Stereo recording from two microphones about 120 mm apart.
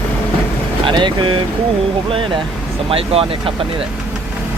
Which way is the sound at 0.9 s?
45° right (ahead or behind).